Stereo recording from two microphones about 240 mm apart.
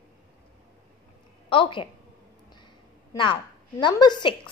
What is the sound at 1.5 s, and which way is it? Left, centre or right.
Speech, left.